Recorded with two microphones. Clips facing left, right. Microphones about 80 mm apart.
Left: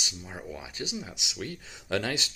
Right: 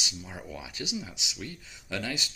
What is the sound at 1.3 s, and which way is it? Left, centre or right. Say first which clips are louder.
Speech: left 3 dB; left.